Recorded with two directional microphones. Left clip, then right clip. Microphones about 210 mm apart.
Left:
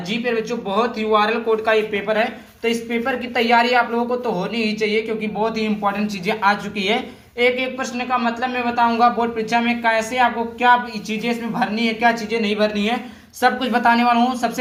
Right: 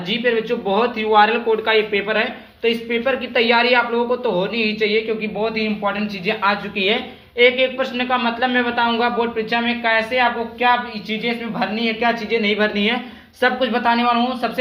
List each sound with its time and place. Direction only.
0.1 s speech: centre (ahead or behind)
13.4 s speech: 15° left (ahead or behind)